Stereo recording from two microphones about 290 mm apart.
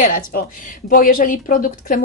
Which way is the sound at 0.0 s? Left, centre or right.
Left.